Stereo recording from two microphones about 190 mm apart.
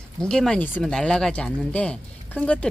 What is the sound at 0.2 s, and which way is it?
Speech, 5° left (ahead or behind).